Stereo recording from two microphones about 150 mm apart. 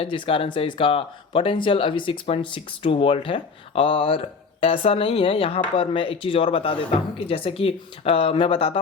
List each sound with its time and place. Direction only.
0.0 s speech: 35° left (ahead or behind)